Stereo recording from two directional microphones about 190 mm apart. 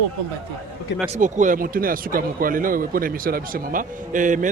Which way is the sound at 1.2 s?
40° right (ahead or behind).